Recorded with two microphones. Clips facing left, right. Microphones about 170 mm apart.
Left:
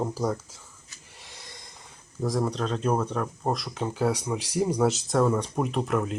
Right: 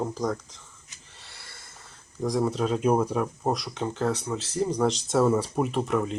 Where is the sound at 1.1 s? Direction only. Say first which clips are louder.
Left 3 dB; 15° left (ahead or behind).